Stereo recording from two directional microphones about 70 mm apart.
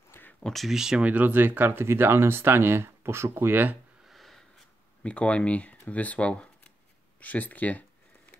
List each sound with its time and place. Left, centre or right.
0.4 s speech: centre
0.7 s speech: centre
1.0 s speech: right
4.1 s a sound: centre
5.0 s speech: centre